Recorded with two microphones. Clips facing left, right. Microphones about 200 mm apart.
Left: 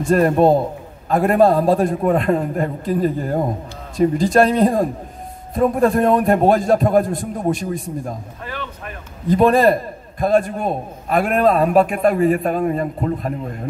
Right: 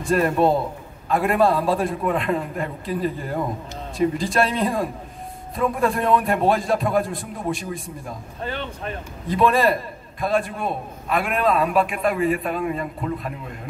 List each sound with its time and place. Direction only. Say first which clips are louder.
0.1 s a man's voice: left 5 dB; 45° left (ahead or behind)
8.5 s speech: right 2 dB; 30° right (ahead or behind)
9.3 s a man's voice: left 5 dB; 45° left (ahead or behind)